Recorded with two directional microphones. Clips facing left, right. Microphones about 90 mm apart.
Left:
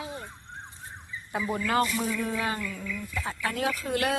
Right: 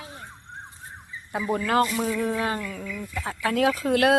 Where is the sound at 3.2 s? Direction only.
85° right.